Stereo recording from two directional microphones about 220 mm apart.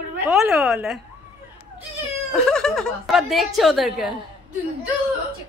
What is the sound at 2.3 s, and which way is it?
A woman's voice, centre (ahead or behind).